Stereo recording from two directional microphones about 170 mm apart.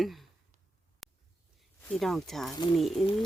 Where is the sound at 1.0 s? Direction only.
Centre (ahead or behind).